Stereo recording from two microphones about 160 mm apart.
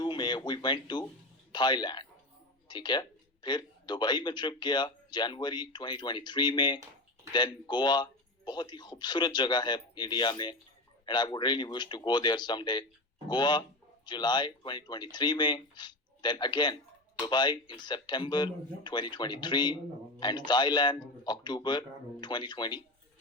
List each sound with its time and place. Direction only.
0.0 s a man's voice: 25° left (ahead or behind)